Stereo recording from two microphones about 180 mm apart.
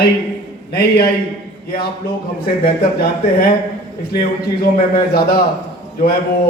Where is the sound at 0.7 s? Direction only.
60° left (ahead or behind).